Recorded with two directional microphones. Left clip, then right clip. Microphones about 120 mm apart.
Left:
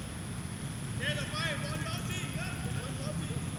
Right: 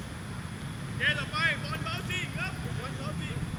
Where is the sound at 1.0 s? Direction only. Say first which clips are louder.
Right 7 dB; 30° right (ahead or behind).